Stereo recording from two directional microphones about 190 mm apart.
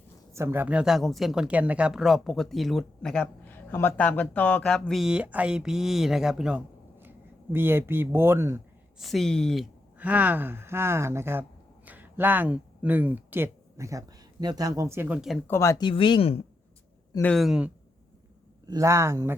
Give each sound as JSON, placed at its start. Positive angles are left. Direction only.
{"t": 0.3, "sound": "speech", "side_deg": -10}
{"t": 9.0, "sound": "speech", "side_deg": 0}
{"t": 10.0, "sound": "speech", "side_deg": -10}
{"t": 15.4, "sound": "speech", "side_deg": 15}
{"t": 15.9, "sound": "speech", "side_deg": 25}
{"t": 17.2, "sound": "speech", "side_deg": 0}
{"t": 18.6, "sound": "speech", "side_deg": -20}